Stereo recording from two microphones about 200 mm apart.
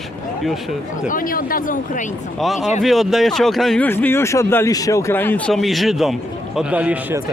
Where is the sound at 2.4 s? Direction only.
Centre (ahead or behind).